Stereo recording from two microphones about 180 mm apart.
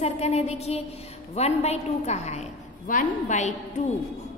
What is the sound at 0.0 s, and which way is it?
A woman's voice, 35° left (ahead or behind).